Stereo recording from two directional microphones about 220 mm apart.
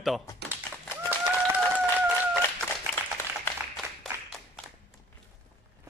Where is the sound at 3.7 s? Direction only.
Centre (ahead or behind).